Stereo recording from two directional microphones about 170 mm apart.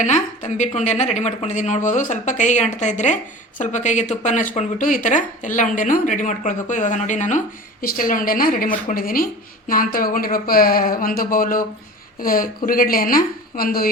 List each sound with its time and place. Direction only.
0.0 s a woman's voice: 45° left (ahead or behind); by 13.9 s 60° left (ahead or behind)